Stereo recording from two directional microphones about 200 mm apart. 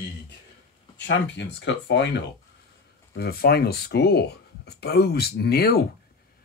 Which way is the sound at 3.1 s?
50° left (ahead or behind).